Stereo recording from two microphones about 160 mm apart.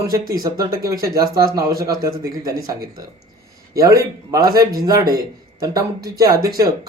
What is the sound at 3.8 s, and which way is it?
A man's voice, 20° right (ahead or behind).